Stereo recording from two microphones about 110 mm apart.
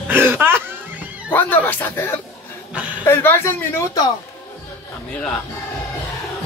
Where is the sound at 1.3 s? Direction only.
15° left (ahead or behind).